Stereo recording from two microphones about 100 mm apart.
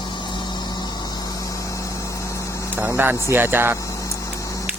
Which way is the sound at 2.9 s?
20° right (ahead or behind).